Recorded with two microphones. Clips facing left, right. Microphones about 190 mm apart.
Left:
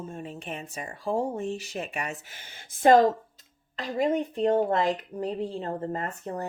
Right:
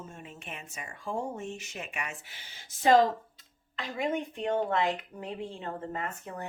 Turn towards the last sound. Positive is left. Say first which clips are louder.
# left 5 dB
turn(degrees=40)  # may be behind; listen again after turning